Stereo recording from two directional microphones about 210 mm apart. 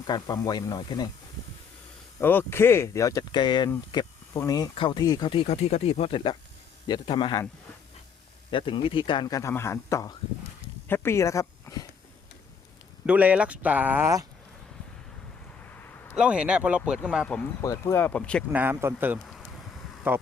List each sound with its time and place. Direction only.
0.1 s speech: 20° left (ahead or behind)
2.1 s speech: 10° left (ahead or behind)
8.4 s speech: 25° left (ahead or behind)
13.1 s speech: 5° right (ahead or behind)
16.1 s speech: 5° right (ahead or behind)
17.2 s speech: 10° left (ahead or behind)
18.5 s speech: 10° right (ahead or behind)